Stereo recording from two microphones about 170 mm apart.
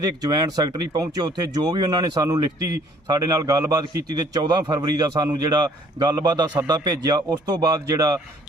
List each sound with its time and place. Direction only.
0.0 s a man's voice: 25° right (ahead or behind)